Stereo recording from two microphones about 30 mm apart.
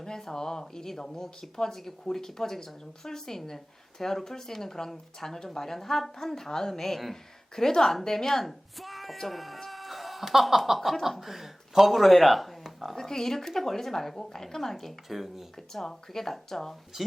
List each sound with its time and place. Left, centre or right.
0.2 s a woman's voice: centre
9.1 s a sound: centre
11.2 s speech: centre
11.9 s speech: centre
13.0 s speech: centre
15.1 s speech: centre
15.7 s speech: centre